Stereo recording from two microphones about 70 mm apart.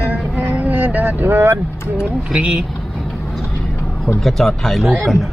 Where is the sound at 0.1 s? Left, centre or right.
Right.